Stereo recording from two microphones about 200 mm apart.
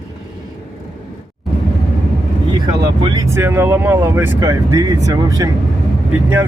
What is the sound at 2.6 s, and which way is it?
Speech, 20° right (ahead or behind).